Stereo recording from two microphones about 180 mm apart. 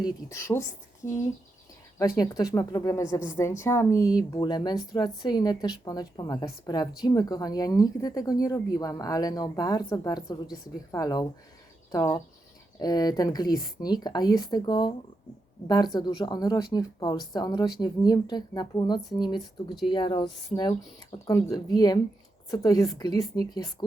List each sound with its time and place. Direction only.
0.0 s a woman's voice: 15° left (ahead or behind)
2.0 s a woman's voice: 20° left (ahead or behind)